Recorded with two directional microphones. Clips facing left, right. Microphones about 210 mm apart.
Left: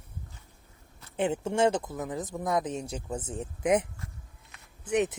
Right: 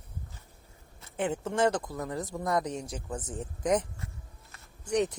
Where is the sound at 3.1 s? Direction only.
10° left (ahead or behind).